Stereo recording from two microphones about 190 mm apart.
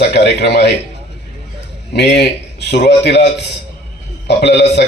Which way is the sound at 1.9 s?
60° left (ahead or behind).